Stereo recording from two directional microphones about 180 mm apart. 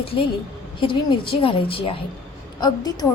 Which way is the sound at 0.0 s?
30° left (ahead or behind).